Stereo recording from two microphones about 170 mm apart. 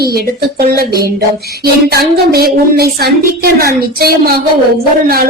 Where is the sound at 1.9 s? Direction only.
65° right (ahead or behind).